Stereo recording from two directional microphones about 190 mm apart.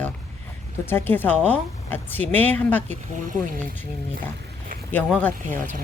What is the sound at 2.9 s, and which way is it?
Speech, 45° right (ahead or behind).